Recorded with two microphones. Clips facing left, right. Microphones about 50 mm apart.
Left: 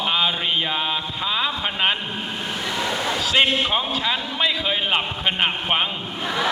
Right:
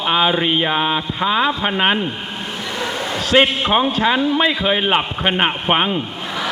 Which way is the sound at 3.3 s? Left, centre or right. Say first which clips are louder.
Right 6 dB; right.